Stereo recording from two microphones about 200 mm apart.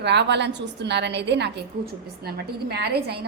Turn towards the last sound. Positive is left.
turn(degrees=-55)  # may be behind; listen again after turning